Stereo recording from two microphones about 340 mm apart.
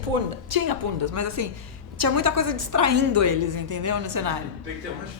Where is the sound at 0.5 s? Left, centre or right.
Right.